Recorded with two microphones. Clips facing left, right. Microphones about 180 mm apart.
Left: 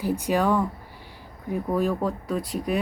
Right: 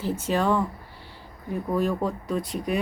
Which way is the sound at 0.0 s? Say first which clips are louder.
Left 2 dB; 15° left (ahead or behind).